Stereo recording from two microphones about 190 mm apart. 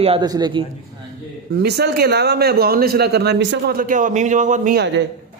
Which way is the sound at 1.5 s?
60° right (ahead or behind).